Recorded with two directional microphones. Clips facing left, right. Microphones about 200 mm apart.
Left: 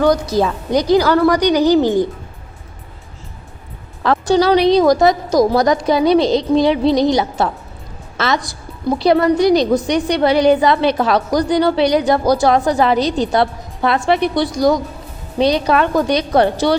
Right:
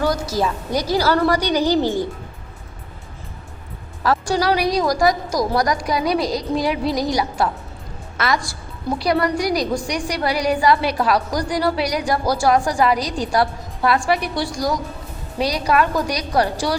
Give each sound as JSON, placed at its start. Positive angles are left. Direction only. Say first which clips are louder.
{"t": 0.0, "sound": "a woman's voice", "louder": "left 7 dB", "side_deg": -5}
{"t": 0.3, "sound": "a woman's voice", "louder": "left 5 dB", "side_deg": 20}
{"t": 4.3, "sound": "a woman's voice", "louder": "left 10 dB", "side_deg": 25}